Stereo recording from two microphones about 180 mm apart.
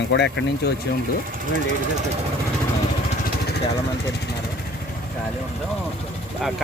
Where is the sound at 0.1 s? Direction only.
75° left (ahead or behind).